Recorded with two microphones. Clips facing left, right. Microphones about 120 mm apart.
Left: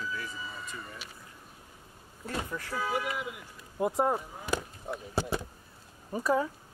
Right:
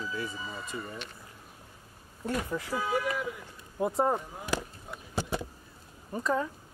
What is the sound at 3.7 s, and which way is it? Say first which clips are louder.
Speech: even; centre (ahead or behind).